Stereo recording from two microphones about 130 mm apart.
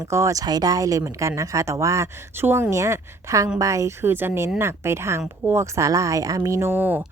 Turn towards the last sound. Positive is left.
turn(degrees=-15)  # may be behind; listen again after turning